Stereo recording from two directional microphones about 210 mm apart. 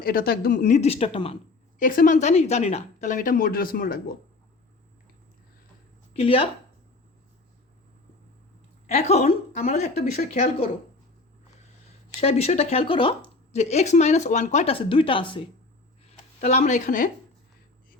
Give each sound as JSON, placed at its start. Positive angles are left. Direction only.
{"t": 0.0, "sound": "speech", "side_deg": 45}
{"t": 0.6, "sound": "speech", "side_deg": 30}
{"t": 1.8, "sound": "speech", "side_deg": 40}
{"t": 6.1, "sound": "speech", "side_deg": 25}
{"t": 9.0, "sound": "speech", "side_deg": 30}
{"t": 12.2, "sound": "a woman's voice", "side_deg": 30}